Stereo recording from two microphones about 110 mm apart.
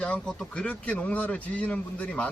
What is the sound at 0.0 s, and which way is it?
Speech, 5° left (ahead or behind).